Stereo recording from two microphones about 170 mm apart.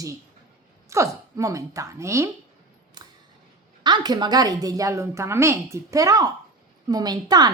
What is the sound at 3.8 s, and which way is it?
A woman's voice, 25° right (ahead or behind).